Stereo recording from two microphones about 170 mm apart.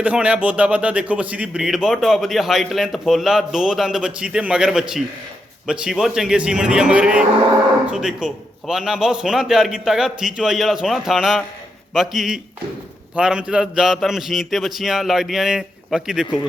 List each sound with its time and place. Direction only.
0.0 s a man's voice: 10° right (ahead or behind)